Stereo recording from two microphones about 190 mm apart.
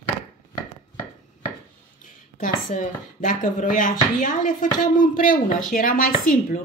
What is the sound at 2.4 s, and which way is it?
A woman's voice, 45° left (ahead or behind).